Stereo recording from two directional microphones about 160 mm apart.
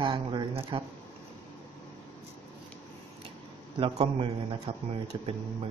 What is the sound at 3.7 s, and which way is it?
Speech, 35° right (ahead or behind).